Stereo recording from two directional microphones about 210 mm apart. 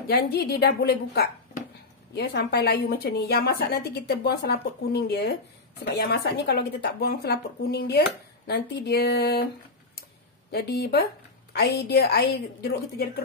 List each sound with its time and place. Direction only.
0.1 s a woman's voice: 45° left (ahead or behind)
10.5 s a woman's voice: 50° left (ahead or behind)